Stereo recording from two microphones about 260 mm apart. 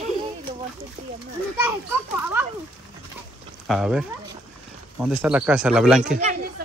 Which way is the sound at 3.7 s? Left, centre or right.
Centre.